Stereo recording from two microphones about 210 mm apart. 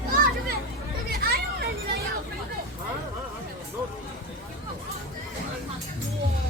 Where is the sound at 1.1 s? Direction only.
45° right (ahead or behind).